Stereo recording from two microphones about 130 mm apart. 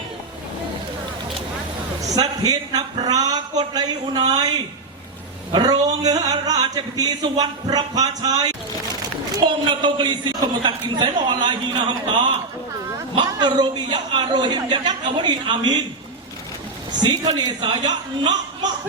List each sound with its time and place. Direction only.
2.0 s a man's voice: 30° right (ahead or behind)
17.0 s a man's voice: 35° right (ahead or behind)